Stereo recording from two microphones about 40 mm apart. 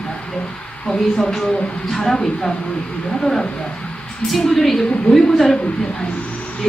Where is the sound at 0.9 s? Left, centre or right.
Centre.